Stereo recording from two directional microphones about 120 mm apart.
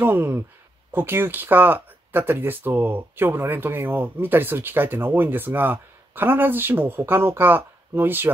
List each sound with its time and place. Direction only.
0.0 s speech: 20° right (ahead or behind)